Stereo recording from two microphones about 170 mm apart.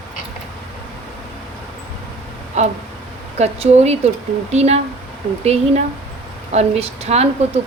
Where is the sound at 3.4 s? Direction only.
40° right (ahead or behind).